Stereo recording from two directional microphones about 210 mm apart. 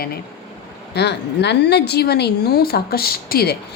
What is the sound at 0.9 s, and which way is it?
A woman's voice, 55° left (ahead or behind).